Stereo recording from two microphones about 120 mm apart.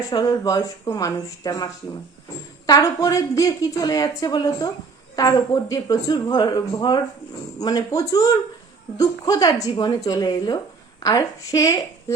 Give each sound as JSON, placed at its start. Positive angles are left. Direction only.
{"t": 0.1, "sound": "a woman's voice", "side_deg": 30}